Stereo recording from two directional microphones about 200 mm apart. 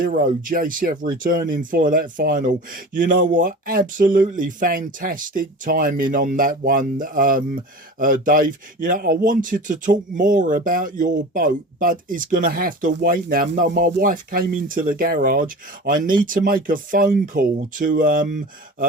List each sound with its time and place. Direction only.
0.0 s speech: 45° right (ahead or behind)